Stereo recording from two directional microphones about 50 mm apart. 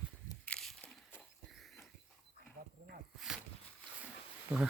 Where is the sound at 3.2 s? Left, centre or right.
Centre.